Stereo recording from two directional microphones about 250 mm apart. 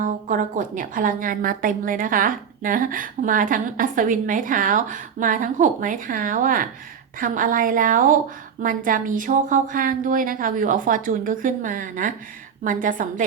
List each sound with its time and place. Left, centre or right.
0.0 s a woman's voice: right